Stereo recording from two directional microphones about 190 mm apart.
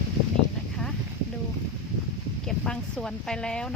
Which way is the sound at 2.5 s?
5° left (ahead or behind).